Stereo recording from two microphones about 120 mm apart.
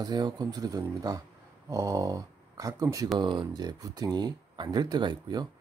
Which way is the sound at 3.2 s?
40° right (ahead or behind).